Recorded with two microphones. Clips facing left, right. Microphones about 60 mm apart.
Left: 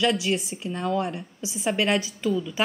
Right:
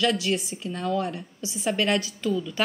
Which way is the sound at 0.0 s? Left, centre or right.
Centre.